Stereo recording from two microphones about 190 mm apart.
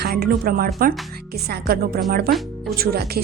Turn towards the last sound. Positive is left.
turn(degrees=-55)  # may be behind; listen again after turning